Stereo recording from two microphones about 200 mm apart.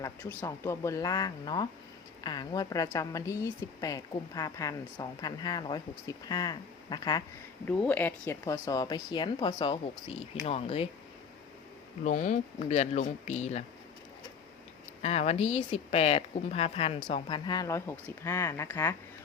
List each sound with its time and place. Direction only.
0.0 s a woman's voice: 10° left (ahead or behind)
7.7 s a woman's voice: 5° left (ahead or behind); by 10.8 s 30° left (ahead or behind)
12.0 s speech: 35° left (ahead or behind)
15.0 s a woman's voice: 30° left (ahead or behind); by 18.9 s 10° left (ahead or behind)